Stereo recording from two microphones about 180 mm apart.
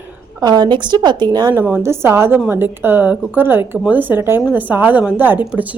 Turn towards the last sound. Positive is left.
turn(degrees=-10)  # may be behind; listen again after turning